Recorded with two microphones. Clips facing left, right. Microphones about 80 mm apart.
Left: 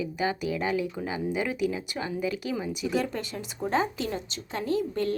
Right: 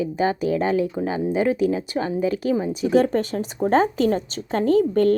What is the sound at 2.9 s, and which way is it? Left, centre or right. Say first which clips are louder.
A woman's voice: right 13 dB; right.